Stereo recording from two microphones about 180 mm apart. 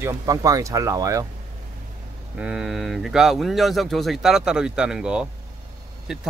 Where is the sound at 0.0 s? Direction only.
15° right (ahead or behind).